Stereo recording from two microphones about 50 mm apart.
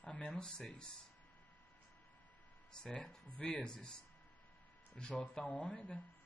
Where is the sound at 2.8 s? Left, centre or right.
Centre.